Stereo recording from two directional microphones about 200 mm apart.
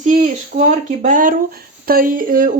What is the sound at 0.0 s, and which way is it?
Speech, 40° right (ahead or behind).